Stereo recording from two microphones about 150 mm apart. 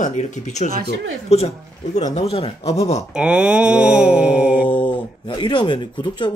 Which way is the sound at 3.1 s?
5° right (ahead or behind).